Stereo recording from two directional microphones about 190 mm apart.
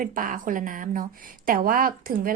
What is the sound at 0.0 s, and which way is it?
A woman's voice, 45° right (ahead or behind).